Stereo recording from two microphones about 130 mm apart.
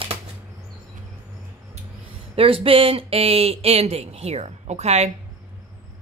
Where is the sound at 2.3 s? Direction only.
45° right (ahead or behind).